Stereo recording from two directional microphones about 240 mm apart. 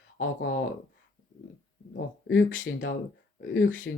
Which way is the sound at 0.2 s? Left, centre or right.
Left.